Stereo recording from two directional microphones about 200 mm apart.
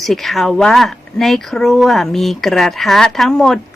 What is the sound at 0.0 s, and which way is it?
Speech, centre (ahead or behind).